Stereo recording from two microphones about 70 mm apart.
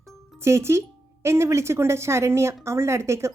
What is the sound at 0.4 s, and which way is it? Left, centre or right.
A woman's voice, right.